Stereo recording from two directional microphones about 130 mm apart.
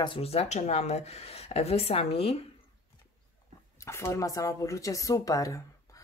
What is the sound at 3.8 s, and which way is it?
Speech, 20° left (ahead or behind).